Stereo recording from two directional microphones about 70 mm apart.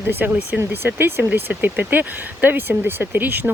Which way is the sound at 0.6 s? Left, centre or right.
Right.